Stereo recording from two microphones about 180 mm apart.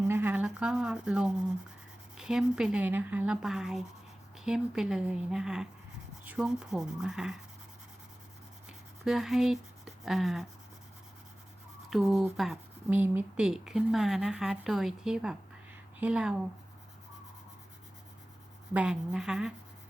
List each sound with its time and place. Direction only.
0.1 s a sound: 10° right (ahead or behind)
2.1 s speech: 5° right (ahead or behind)
9.0 s speech: centre (ahead or behind)
11.9 s speech: centre (ahead or behind)
18.7 s speech: 5° right (ahead or behind)